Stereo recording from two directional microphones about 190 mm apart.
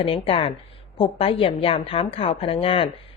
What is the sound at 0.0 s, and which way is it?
A woman's voice, 30° left (ahead or behind).